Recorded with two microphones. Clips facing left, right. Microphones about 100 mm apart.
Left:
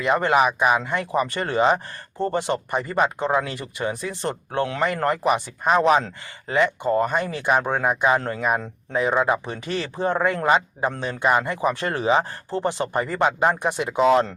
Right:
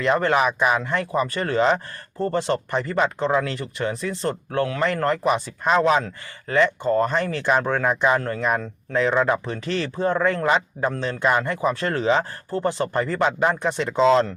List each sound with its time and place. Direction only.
0.0 s speech: 15° left (ahead or behind)
8.4 s speech: 10° left (ahead or behind)